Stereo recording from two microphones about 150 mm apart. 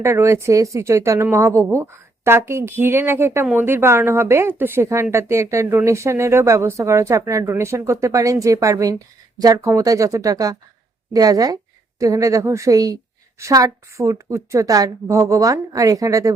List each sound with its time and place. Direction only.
0.0 s a woman's voice: 20° right (ahead or behind)